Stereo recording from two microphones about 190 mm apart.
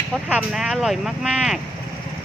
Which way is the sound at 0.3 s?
5° right (ahead or behind).